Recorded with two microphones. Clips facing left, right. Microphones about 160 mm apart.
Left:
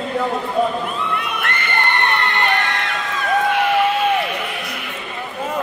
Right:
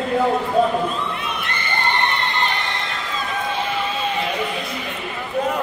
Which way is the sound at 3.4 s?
65° left (ahead or behind).